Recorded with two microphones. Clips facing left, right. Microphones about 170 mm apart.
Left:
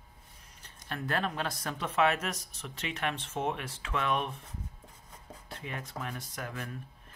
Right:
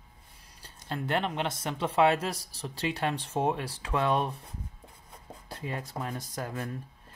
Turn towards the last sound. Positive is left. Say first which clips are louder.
# right 4 dB
turn(degrees=-35)  # may be behind; listen again after turning